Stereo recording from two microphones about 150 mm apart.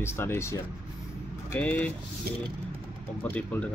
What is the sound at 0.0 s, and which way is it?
Speech, 15° left (ahead or behind).